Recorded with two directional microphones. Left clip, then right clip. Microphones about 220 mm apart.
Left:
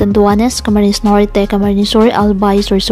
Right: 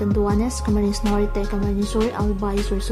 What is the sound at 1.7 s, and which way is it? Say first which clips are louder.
Speech: left 13 dB; centre (ahead or behind).